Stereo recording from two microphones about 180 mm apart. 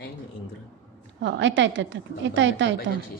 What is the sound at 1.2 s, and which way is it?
A woman's voice, 80° right.